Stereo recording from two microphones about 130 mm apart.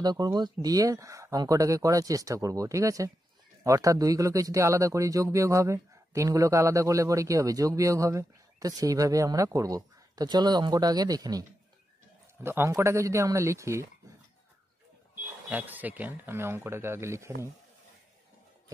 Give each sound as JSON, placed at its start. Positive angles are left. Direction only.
{"t": 0.0, "sound": "speech", "side_deg": -30}
{"t": 12.4, "sound": "speech", "side_deg": -20}
{"t": 15.5, "sound": "speech", "side_deg": -15}